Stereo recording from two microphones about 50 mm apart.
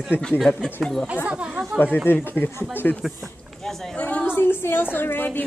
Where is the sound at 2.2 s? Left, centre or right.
Left.